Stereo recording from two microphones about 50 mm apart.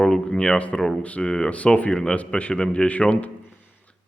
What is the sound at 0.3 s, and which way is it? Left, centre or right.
Speech, centre.